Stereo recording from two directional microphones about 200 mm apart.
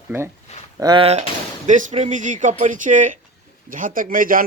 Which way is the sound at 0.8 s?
25° right (ahead or behind).